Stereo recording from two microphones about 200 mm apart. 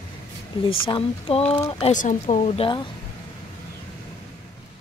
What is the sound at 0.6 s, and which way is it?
Speech, 25° left (ahead or behind).